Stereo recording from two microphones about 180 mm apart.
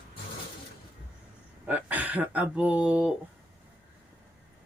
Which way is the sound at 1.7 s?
10° right (ahead or behind).